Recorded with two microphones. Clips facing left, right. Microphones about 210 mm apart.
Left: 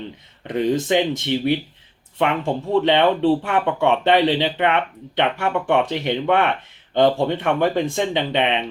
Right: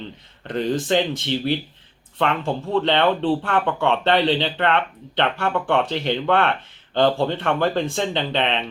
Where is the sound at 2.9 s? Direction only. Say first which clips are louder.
Left 3 dB; 10° left (ahead or behind).